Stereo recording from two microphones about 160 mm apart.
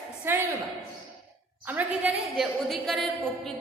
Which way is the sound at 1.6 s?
10° right (ahead or behind).